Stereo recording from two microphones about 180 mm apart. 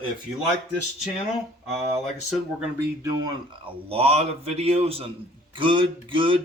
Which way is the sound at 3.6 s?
35° right (ahead or behind).